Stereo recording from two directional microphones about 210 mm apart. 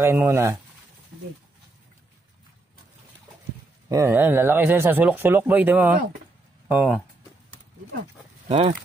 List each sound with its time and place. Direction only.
0.0 s speech: 10° right (ahead or behind)
3.9 s speech: 10° right (ahead or behind)
8.5 s speech: 30° right (ahead or behind)